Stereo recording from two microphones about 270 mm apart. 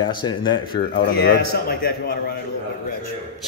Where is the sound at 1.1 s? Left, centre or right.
Left.